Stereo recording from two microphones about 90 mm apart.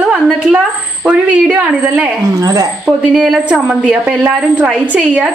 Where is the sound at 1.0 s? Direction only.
15° right (ahead or behind).